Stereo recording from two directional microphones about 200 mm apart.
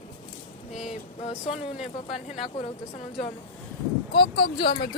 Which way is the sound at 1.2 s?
30° left (ahead or behind).